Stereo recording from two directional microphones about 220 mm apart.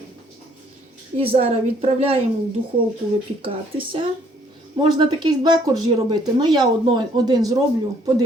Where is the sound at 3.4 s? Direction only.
25° right (ahead or behind).